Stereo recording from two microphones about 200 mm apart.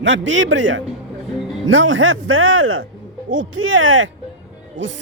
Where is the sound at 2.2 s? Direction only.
90° right.